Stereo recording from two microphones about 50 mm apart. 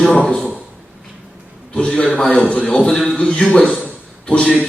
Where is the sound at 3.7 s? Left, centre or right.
Left.